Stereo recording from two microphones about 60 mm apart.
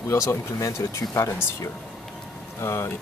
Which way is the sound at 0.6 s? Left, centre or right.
Left.